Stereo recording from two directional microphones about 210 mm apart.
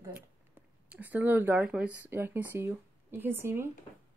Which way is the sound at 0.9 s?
10° right (ahead or behind).